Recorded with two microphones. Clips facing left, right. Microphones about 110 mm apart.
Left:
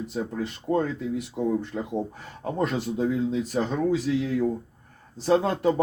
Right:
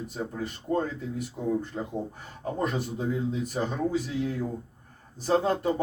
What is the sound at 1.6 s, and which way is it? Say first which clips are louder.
Speech: left 4 dB; 75° left (ahead or behind).